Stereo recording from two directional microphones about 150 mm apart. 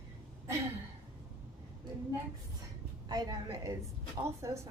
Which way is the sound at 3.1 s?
25° right (ahead or behind).